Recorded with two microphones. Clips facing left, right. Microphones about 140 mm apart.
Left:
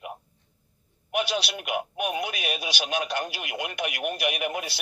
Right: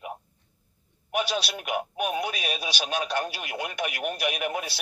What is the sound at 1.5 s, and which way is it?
Speech, 5° left (ahead or behind).